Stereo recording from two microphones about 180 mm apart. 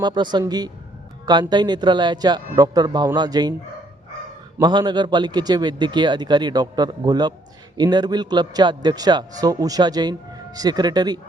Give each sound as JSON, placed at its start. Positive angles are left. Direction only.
{"t": 0.0, "sound": "a man's voice", "side_deg": -25}
{"t": 4.6, "sound": "a man's voice", "side_deg": -25}